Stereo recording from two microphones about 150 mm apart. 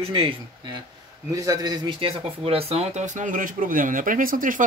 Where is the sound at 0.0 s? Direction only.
35° right (ahead or behind).